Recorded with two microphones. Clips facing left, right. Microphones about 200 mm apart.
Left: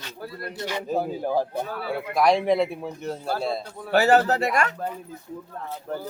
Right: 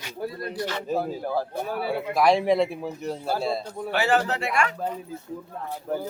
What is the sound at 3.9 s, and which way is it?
Speech, 40° left (ahead or behind).